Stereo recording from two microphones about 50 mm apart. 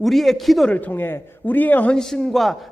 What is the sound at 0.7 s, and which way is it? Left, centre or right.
A man's voice, left.